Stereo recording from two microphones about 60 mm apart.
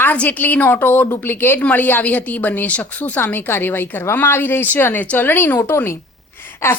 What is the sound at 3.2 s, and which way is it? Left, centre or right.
A woman's voice, left.